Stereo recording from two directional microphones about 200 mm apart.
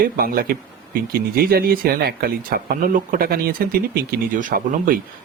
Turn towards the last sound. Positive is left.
turn(degrees=-45)  # may be behind; listen again after turning